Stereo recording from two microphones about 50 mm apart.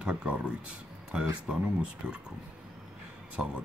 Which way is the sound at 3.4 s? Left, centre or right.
Right.